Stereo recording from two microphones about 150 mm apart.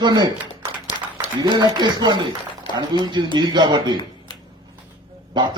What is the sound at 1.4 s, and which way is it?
Speech, 30° right (ahead or behind).